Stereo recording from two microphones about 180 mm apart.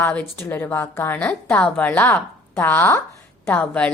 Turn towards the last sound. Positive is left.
turn(degrees=5)  # may be behind; listen again after turning